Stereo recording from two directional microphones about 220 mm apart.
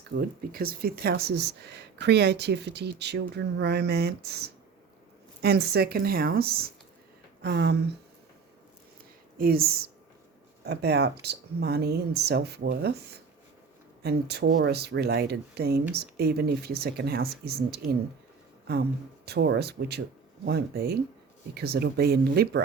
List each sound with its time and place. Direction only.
0.2 s speech: 45° right (ahead or behind)
9.4 s speech: 45° right (ahead or behind)